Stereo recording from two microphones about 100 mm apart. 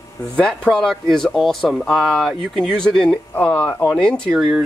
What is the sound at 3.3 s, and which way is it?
Speech, 15° left (ahead or behind).